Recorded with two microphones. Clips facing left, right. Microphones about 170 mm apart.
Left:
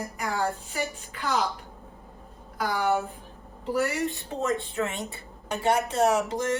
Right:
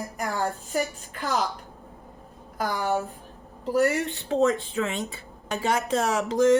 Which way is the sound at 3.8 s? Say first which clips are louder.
Right 4 dB; 65° right (ahead or behind).